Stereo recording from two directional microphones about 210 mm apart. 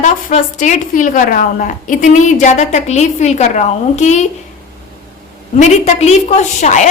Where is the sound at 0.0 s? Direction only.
35° left (ahead or behind).